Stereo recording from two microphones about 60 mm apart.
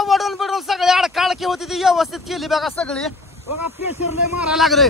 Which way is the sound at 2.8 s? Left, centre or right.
Centre.